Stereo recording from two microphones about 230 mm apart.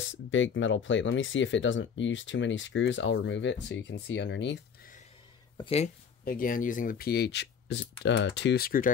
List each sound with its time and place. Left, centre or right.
0.0 s speech: left
5.6 s speech: left
6.2 s speech: left